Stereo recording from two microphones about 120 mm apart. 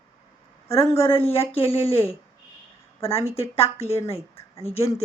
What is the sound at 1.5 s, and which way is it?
Speech, 55° left (ahead or behind).